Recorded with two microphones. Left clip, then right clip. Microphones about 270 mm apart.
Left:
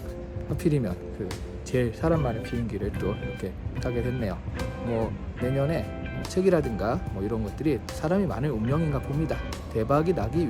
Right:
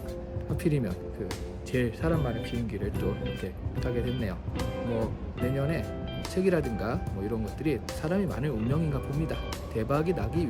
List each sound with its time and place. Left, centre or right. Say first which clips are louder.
0.5 s speech: left 3 dB; centre